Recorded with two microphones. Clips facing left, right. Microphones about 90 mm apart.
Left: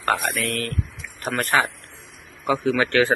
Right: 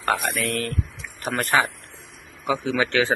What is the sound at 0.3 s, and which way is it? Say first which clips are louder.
Speech: even; 20° right (ahead or behind).